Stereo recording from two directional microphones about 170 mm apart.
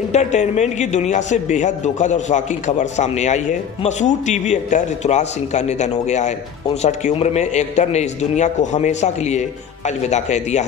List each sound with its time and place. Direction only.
0.1 s a man's voice: 45° left (ahead or behind)